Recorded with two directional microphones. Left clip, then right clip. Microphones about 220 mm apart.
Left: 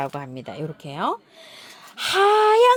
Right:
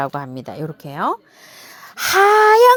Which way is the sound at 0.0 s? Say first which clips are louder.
Right 5 dB; 30° right (ahead or behind).